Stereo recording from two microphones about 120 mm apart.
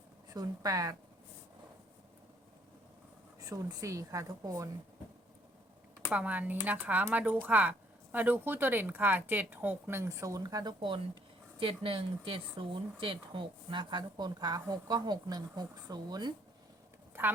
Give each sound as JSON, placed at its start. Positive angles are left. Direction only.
{"t": 0.3, "sound": "a woman's voice", "side_deg": -30}
{"t": 3.4, "sound": "a woman's voice", "side_deg": -30}
{"t": 6.1, "sound": "speech", "side_deg": -10}
{"t": 17.2, "sound": "speech", "side_deg": -20}